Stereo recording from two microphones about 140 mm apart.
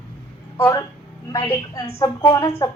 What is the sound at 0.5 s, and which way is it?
A woman's voice, 20° left (ahead or behind).